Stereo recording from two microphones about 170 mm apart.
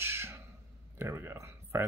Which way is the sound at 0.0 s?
15° right (ahead or behind).